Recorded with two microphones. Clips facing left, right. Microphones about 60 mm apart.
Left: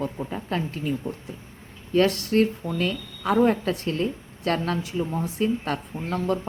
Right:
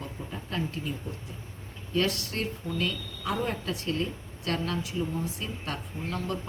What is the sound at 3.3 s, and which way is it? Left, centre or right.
Speech, left.